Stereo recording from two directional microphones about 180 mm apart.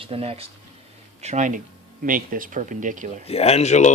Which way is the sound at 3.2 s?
35° left (ahead or behind).